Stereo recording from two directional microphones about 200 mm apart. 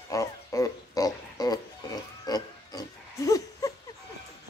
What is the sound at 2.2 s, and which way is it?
Pig, 20° left (ahead or behind).